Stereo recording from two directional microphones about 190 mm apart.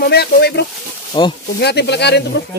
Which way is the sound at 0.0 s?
55° left (ahead or behind).